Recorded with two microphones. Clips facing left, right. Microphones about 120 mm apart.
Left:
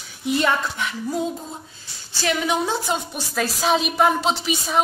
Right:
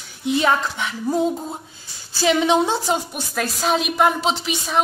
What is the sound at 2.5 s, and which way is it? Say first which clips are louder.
Speech: right 4 dB; 20° right (ahead or behind).